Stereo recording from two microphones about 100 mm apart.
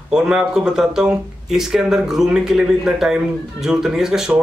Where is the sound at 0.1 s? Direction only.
10° right (ahead or behind).